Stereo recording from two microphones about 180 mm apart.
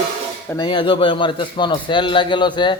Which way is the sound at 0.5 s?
25° left (ahead or behind).